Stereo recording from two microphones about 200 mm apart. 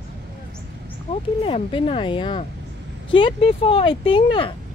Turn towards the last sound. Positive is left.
turn(degrees=25)  # may be behind; listen again after turning